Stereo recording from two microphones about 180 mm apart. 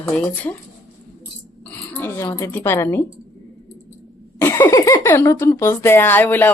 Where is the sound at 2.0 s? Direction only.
10° left (ahead or behind).